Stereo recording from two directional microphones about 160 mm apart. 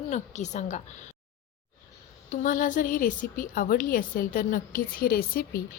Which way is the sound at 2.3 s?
55° left (ahead or behind).